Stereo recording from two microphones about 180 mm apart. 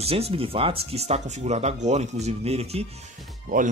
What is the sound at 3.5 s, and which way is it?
Speech, 50° right (ahead or behind).